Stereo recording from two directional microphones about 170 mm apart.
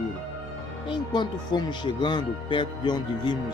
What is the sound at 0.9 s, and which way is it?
Speech, 25° left (ahead or behind).